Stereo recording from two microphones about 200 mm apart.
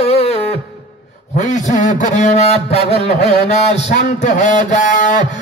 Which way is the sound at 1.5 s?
35° left (ahead or behind).